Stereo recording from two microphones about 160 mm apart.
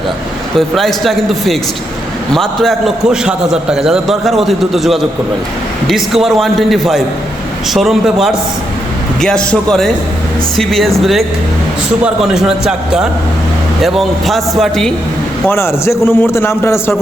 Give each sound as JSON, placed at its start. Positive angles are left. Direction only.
{"t": 0.5, "sound": "a man's voice", "side_deg": 0}
{"t": 15.4, "sound": "a man's voice", "side_deg": 15}